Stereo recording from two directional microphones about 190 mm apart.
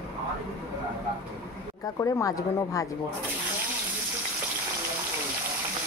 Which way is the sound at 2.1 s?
20° left (ahead or behind).